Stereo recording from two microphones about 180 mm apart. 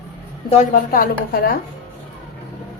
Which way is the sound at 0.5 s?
45° left (ahead or behind).